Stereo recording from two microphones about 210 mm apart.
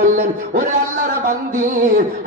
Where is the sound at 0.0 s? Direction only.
40° right (ahead or behind).